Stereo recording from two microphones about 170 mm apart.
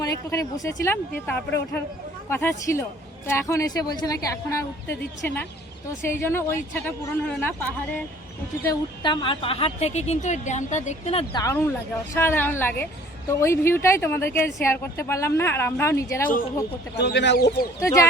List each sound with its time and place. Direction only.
0.0 s a woman's voice: 20° left (ahead or behind)
8.6 s a woman's voice: 25° left (ahead or behind)
11.4 s a woman's voice: 15° left (ahead or behind)
17.0 s speech: 85° left
17.7 s a woman's voice: 20° left (ahead or behind)